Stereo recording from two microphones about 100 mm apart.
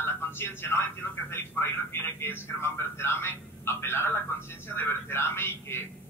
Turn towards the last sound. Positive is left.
turn(degrees=25)  # may be behind; listen again after turning